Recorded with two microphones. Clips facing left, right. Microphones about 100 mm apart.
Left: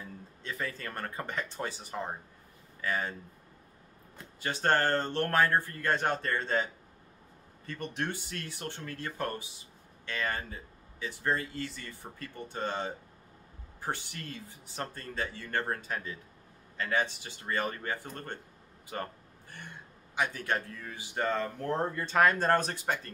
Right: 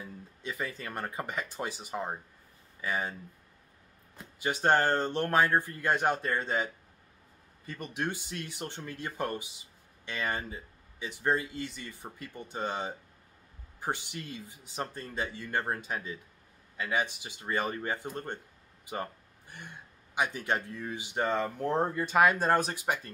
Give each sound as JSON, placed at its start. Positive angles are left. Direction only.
{"t": 0.0, "sound": "speech", "side_deg": -15}
{"t": 4.2, "sound": "speech", "side_deg": -15}
{"t": 20.2, "sound": "speech", "side_deg": -20}